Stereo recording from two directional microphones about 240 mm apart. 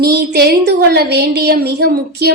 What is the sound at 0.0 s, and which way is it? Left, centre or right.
A woman's voice, right.